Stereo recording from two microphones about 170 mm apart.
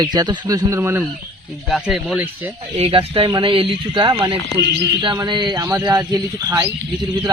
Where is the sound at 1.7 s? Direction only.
Centre (ahead or behind).